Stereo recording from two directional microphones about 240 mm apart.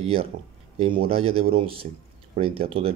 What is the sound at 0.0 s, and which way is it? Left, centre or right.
Speech, right.